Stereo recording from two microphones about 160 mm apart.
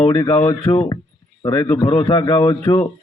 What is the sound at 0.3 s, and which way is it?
A man's voice, 20° left (ahead or behind).